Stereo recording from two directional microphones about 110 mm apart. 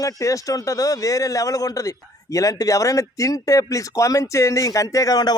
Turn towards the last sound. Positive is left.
turn(degrees=35)  # may be behind; listen again after turning